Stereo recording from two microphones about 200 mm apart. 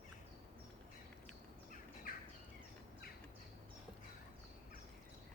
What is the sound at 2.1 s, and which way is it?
Bird, 45° left (ahead or behind).